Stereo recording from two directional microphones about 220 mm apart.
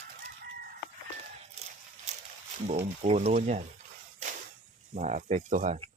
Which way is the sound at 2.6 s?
30° right (ahead or behind).